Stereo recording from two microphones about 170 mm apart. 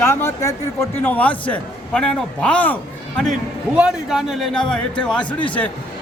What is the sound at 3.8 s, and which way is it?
A man's voice, 5° right (ahead or behind).